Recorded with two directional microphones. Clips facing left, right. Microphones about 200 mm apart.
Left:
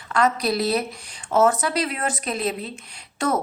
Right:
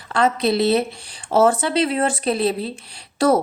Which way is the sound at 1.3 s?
30° right (ahead or behind).